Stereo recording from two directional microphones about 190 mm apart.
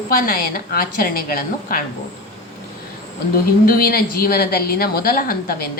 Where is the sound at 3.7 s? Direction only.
50° left (ahead or behind).